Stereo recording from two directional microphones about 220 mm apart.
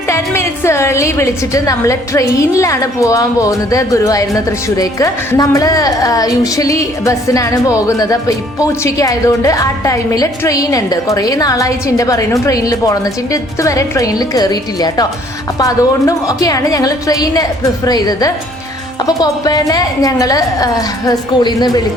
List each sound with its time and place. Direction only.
0.1 s a woman's voice: 10° left (ahead or behind)